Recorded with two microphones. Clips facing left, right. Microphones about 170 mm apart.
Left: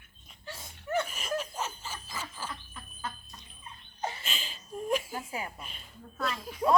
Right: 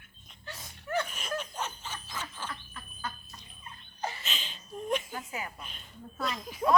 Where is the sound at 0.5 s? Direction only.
25° left (ahead or behind).